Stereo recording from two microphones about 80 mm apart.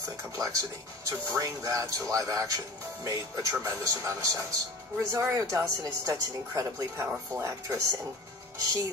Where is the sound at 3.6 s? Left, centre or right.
Right.